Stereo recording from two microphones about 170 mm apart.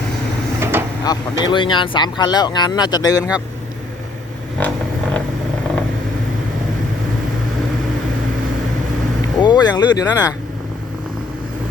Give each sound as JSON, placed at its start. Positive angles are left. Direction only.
{"t": 0.6, "sound": "vehicle", "side_deg": -15}
{"t": 1.0, "sound": "speech", "side_deg": 25}
{"t": 4.6, "sound": "vehicle", "side_deg": 10}
{"t": 9.4, "sound": "speech", "side_deg": 25}